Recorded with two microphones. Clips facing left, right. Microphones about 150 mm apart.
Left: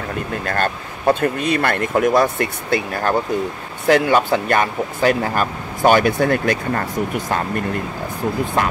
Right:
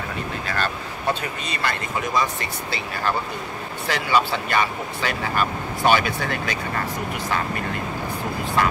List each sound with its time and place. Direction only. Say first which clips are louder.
0.5 s speech: left 5 dB; 50° left (ahead or behind)